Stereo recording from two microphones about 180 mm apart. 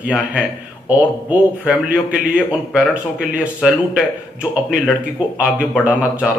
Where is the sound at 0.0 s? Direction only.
5° right (ahead or behind).